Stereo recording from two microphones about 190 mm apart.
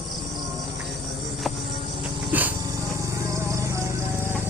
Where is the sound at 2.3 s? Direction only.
10° right (ahead or behind).